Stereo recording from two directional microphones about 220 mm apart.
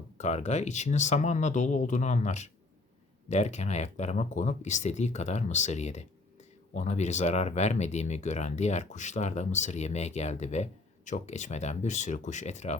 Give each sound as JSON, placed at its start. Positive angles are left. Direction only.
{"t": 0.2, "sound": "speech", "side_deg": 30}